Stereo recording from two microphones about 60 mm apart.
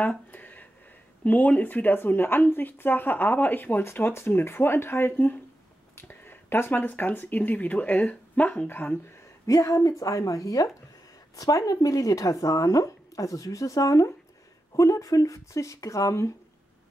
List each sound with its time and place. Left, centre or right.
0.3 s a sound: left
1.2 s speech: left
3.8 s speech: left
8.6 s speech: left
9.5 s speech: left